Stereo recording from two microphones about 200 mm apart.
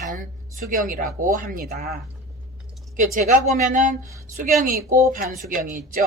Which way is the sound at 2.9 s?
45° right (ahead or behind).